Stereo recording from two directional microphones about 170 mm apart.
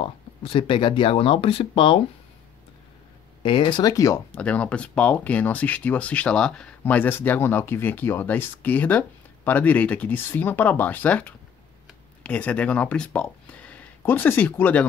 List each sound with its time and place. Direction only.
0.0 s speech: 30° left (ahead or behind)
3.4 s speech: 30° left (ahead or behind); by 14.9 s 10° left (ahead or behind)